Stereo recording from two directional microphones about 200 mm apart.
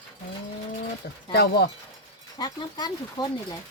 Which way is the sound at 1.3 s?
55° left (ahead or behind).